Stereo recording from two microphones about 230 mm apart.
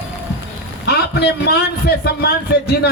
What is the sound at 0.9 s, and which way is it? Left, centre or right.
Speech, left.